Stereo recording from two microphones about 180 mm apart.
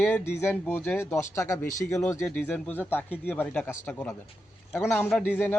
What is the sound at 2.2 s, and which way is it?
A man's voice, 5° left (ahead or behind).